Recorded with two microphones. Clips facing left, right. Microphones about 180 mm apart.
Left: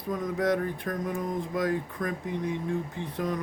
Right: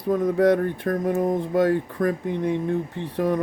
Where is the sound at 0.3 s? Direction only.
60° right (ahead or behind).